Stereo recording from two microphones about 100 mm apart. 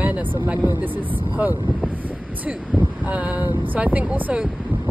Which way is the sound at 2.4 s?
15° right (ahead or behind).